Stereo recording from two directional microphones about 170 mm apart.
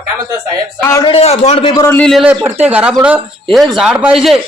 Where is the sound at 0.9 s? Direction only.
25° left (ahead or behind).